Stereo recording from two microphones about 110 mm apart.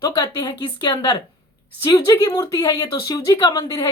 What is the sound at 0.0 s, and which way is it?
A woman's voice, 40° left (ahead or behind).